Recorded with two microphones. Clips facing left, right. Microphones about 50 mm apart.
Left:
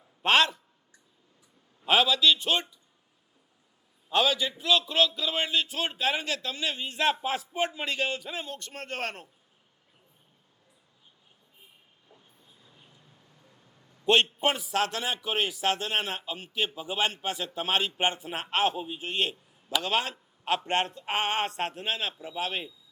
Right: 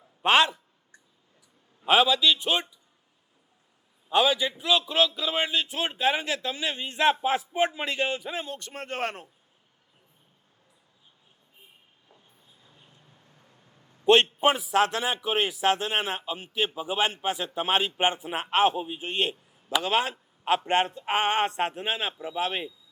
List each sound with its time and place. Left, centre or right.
0.2 s a man's voice: centre
1.8 s a man's voice: centre
4.1 s a man's voice: centre
14.0 s a man's voice: right